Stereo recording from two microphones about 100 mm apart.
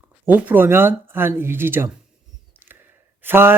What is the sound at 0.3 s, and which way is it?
Speech, 20° right (ahead or behind).